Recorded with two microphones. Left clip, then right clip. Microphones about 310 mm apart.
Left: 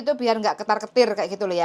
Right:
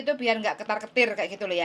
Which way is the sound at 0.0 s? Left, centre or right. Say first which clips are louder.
Left 4 dB; left.